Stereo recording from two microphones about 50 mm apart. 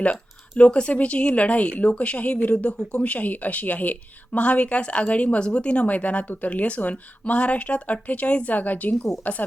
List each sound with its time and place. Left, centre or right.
0.6 s a woman's voice: left